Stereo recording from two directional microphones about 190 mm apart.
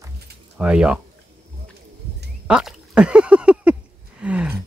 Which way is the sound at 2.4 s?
5° right (ahead or behind).